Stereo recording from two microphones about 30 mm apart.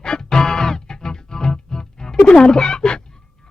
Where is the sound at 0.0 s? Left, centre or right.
Left.